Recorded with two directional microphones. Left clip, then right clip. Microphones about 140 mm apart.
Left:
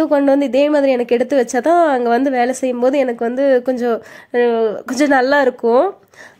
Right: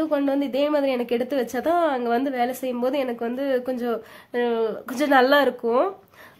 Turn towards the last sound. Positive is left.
turn(degrees=45)  # may be behind; listen again after turning